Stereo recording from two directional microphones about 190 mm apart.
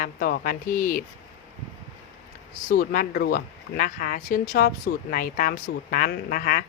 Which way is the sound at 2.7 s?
50° left (ahead or behind).